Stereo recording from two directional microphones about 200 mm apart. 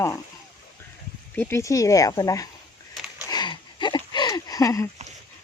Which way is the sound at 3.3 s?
20° left (ahead or behind).